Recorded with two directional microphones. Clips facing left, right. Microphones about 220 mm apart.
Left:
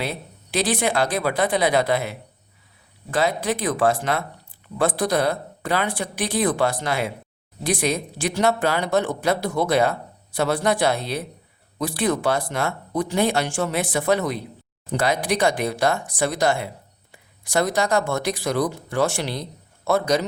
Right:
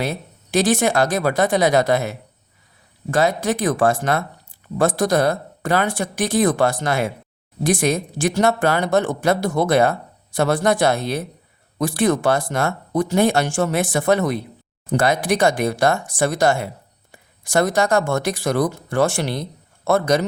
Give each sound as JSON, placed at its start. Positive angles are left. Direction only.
{"t": 0.0, "sound": "speech", "side_deg": -45}